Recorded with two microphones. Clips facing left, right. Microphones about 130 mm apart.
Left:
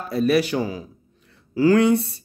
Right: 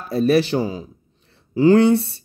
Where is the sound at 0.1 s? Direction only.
30° right (ahead or behind).